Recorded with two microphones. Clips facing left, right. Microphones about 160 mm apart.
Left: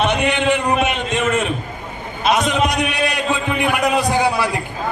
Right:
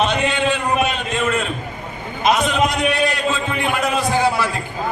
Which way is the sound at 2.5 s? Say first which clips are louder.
Even; 20° left (ahead or behind).